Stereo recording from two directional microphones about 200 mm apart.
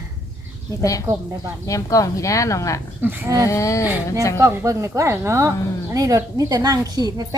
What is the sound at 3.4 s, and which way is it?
Speech, 15° left (ahead or behind).